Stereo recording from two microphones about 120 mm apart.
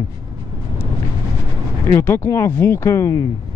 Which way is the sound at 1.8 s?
25° left (ahead or behind).